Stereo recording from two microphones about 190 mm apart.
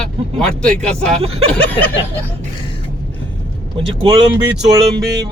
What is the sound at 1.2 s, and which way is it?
Speech, 30° right (ahead or behind).